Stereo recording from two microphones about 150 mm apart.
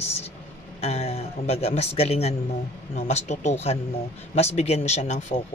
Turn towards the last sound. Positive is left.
turn(degrees=50)  # may be behind; listen again after turning